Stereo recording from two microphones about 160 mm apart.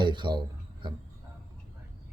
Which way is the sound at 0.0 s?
30° right (ahead or behind).